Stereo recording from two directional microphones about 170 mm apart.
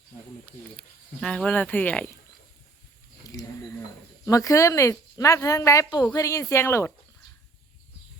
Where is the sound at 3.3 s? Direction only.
20° left (ahead or behind).